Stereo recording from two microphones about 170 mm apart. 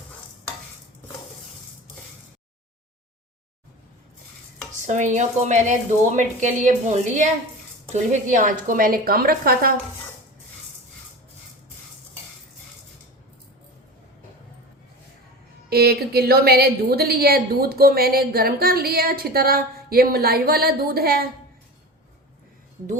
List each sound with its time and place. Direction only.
4.9 s a woman's voice: 45° right (ahead or behind)
15.7 s a woman's voice: 70° right (ahead or behind)